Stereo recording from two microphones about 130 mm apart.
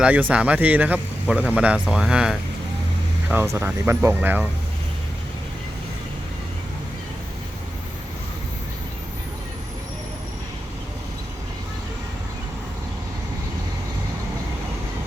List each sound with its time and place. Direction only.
0.0 s speech: 10° right (ahead or behind)
3.2 s speech: 20° right (ahead or behind)